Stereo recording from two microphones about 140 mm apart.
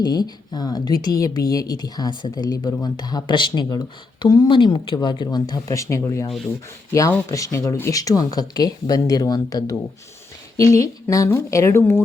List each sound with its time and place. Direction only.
0.0 s a woman's voice: 30° left (ahead or behind)